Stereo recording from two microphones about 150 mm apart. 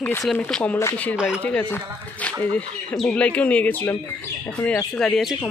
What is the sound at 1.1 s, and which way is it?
Speech, 5° right (ahead or behind).